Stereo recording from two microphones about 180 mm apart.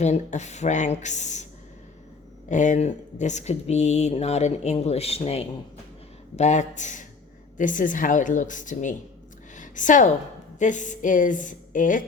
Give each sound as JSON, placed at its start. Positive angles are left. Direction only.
{"t": 0.0, "sound": "speech", "side_deg": 40}
{"t": 2.5, "sound": "a woman's voice", "side_deg": 45}